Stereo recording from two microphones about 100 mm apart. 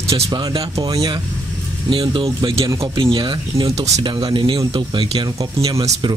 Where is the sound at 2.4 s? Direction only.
70° right (ahead or behind).